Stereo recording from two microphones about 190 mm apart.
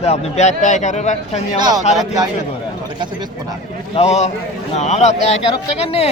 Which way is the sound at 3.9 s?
35° left (ahead or behind).